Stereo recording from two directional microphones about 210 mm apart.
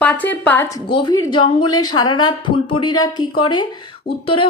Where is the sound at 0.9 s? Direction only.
25° left (ahead or behind).